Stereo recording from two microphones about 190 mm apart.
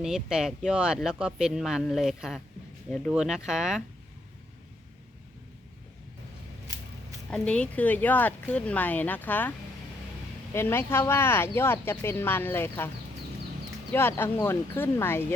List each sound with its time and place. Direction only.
0.0 s speech: 5° right (ahead or behind)
7.3 s speech: 5° left (ahead or behind)
10.5 s speech: 15° left (ahead or behind)
13.9 s speech: 10° left (ahead or behind)